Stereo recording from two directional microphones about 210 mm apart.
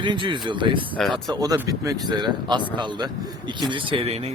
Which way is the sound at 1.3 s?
15° right (ahead or behind).